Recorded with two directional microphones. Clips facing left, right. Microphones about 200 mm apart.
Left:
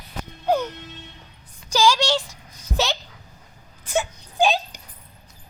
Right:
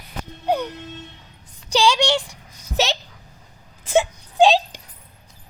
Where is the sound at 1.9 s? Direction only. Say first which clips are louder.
Right 2 dB; 15° right (ahead or behind).